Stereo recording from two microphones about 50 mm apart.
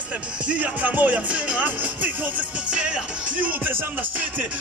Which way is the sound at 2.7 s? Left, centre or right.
Centre.